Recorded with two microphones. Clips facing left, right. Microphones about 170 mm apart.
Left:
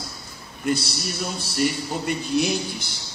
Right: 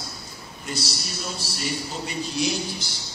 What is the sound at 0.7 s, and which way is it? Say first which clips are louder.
A man's voice: left 8 dB; 55° left (ahead or behind).